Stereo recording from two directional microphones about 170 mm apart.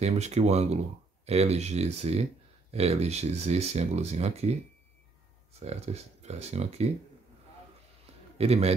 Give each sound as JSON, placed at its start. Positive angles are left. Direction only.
{"t": 0.0, "sound": "speech", "side_deg": -40}
{"t": 5.6, "sound": "speech", "side_deg": -40}
{"t": 8.4, "sound": "speech", "side_deg": -35}